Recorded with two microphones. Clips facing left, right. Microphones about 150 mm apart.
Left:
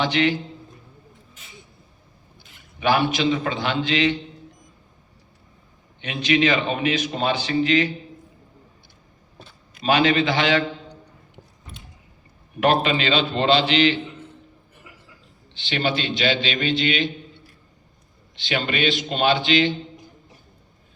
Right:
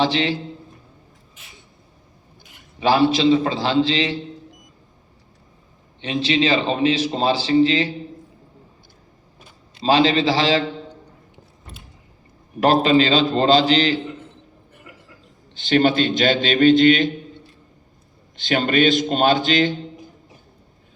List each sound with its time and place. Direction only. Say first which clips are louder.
0.0 s a man's voice: right 1 dB; 30° right (ahead or behind)
2.7 s a man's voice: right 4 dB; 30° right (ahead or behind)
6.0 s a man's voice: right 1 dB; 30° right (ahead or behind)
9.7 s a man's voice: right 2 dB; 30° right (ahead or behind)
12.5 s a man's voice: right 5 dB; 35° right (ahead or behind)
15.5 s a man's voice: right 8 dB; 45° right (ahead or behind)
18.3 s a man's voice: right 6 dB; 45° right (ahead or behind)